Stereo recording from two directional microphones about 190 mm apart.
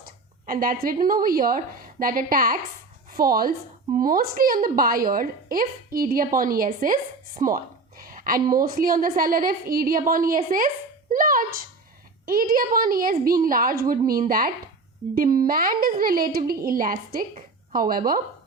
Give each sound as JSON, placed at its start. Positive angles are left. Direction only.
{"t": 0.0, "sound": "a woman's voice", "side_deg": -50}